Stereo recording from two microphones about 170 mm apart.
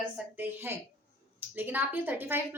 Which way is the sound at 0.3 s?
10° right (ahead or behind).